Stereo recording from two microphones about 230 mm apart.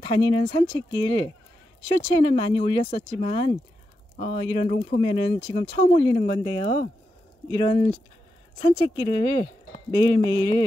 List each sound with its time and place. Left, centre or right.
0.0 s speech: centre